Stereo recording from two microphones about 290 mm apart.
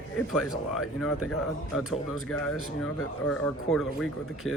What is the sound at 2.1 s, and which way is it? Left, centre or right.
Speech, left.